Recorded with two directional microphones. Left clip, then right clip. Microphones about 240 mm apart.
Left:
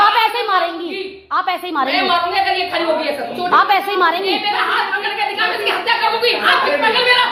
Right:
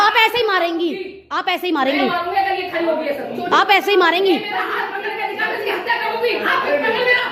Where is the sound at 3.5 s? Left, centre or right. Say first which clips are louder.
Even; right.